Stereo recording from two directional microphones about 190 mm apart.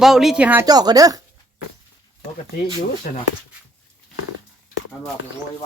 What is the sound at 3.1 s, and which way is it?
Speech, 45° left (ahead or behind).